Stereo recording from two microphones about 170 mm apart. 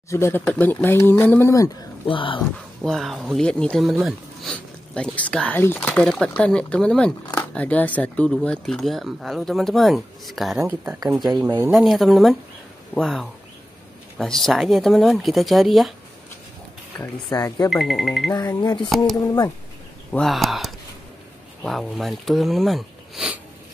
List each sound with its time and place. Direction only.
0.1 s speech: 15° left (ahead or behind)
2.0 s speech: 30° left (ahead or behind)
2.8 s speech: centre (ahead or behind)
10.6 s speech: 15° right (ahead or behind)
11.7 s speech: centre (ahead or behind)
17.0 s speech: 20° left (ahead or behind)
17.6 s speech: centre (ahead or behind)
18.3 s speech: 20° left (ahead or behind)
20.1 s speech: centre (ahead or behind)